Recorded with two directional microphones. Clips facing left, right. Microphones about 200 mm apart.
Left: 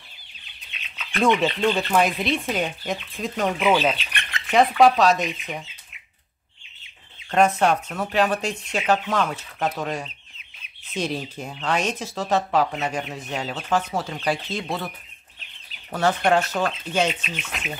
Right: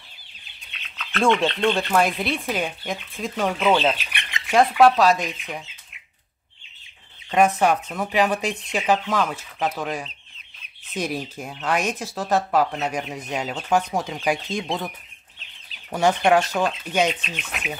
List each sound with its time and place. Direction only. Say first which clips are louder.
0.9 s speech: even; 10° left (ahead or behind)
3.8 s speech: right 1 dB; 5° right (ahead or behind)
4.2 s squawk: even; 15° right (ahead or behind)
4.6 s speech: right 1 dB; centre (ahead or behind)
7.2 s speech: even; 5° right (ahead or behind)
15.9 s speech: right 2 dB; 15° right (ahead or behind)